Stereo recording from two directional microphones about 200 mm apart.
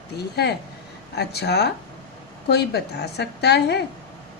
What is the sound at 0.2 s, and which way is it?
A woman's voice, 55° left (ahead or behind).